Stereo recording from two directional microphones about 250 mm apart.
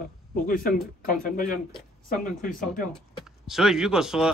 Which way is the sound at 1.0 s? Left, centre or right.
Left.